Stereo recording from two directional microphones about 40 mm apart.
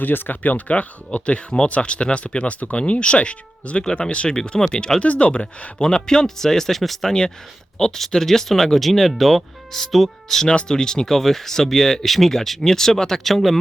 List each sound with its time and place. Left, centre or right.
0.0 s speech: left
1.5 s speech: left
4.9 s speech: left
5.8 s speech: centre